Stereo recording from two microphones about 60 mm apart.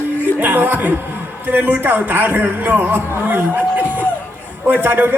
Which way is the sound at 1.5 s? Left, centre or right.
Right.